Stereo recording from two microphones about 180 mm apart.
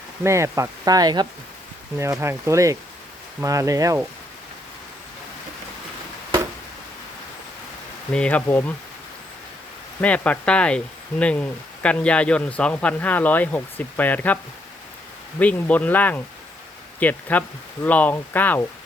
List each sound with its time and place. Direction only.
0.3 s speech: 15° right (ahead or behind)
8.1 s speech: 5° left (ahead or behind)
10.0 s speech: 10° left (ahead or behind)
15.4 s speech: 10° left (ahead or behind)